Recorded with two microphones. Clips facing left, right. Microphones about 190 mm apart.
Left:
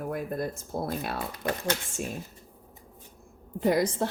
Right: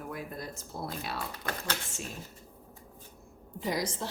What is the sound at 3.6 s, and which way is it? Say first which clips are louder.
Speech: left 8 dB; 55° left (ahead or behind).